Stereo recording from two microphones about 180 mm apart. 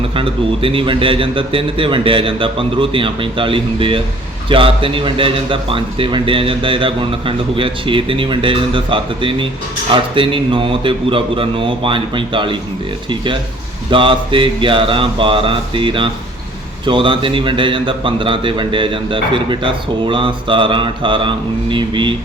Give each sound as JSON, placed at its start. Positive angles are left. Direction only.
{"t": 0.1, "sound": "a man's voice", "side_deg": -30}